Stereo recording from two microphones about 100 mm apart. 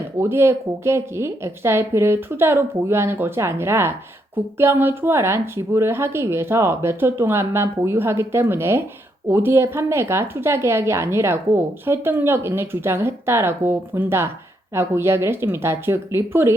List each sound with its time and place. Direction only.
0.2 s speech: 25° right (ahead or behind)